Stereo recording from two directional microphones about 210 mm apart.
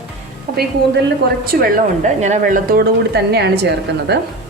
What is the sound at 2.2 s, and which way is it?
A woman's voice, 35° right (ahead or behind).